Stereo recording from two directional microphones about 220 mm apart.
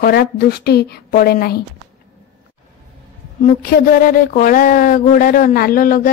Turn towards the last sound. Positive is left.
turn(degrees=40)  # may be behind; listen again after turning